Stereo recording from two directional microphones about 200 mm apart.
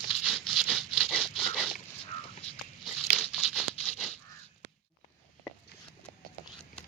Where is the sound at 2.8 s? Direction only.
Centre (ahead or behind).